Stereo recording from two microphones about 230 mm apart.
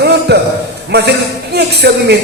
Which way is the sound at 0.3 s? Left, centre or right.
Right.